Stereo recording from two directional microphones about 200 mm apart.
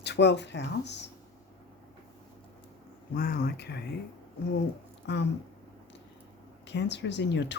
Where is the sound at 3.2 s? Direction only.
45° left (ahead or behind).